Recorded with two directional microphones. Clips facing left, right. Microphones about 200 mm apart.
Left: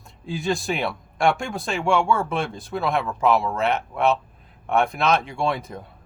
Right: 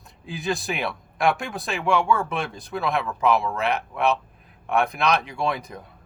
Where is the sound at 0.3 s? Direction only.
Centre (ahead or behind).